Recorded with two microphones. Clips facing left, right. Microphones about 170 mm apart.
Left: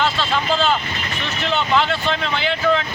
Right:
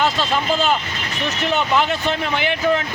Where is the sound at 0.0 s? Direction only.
15° right (ahead or behind).